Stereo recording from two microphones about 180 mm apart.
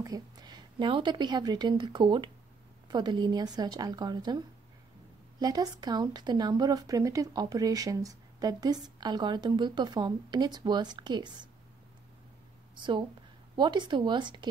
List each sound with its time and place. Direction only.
0.0 s a woman's voice: 20° right (ahead or behind)
5.4 s speech: 20° right (ahead or behind)
12.7 s a woman's voice: 25° right (ahead or behind)